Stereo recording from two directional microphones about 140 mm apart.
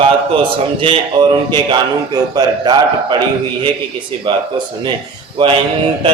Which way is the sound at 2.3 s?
30° right (ahead or behind).